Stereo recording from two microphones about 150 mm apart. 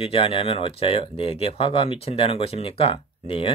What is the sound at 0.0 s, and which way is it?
Speech, 40° left (ahead or behind).